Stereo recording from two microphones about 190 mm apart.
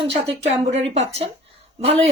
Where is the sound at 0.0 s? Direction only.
30° right (ahead or behind).